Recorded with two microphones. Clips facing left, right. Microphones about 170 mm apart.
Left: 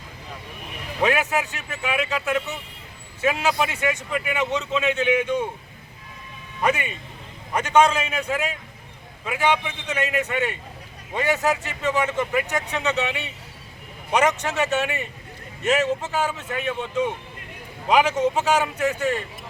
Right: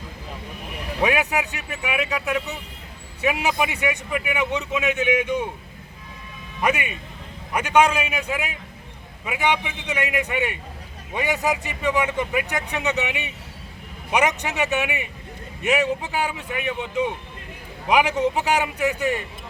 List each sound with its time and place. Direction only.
1.0 s a man's voice: 15° right (ahead or behind)
6.6 s a man's voice: 10° right (ahead or behind)